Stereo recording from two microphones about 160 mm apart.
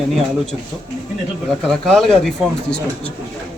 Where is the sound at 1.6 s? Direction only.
5° left (ahead or behind).